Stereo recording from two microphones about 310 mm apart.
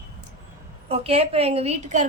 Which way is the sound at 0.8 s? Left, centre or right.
Centre.